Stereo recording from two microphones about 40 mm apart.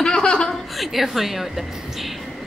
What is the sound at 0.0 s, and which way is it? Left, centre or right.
Chuckle, left.